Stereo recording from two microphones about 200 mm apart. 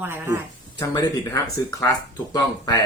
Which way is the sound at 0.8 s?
20° left (ahead or behind).